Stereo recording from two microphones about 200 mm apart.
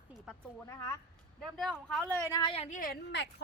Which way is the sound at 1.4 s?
Centre (ahead or behind).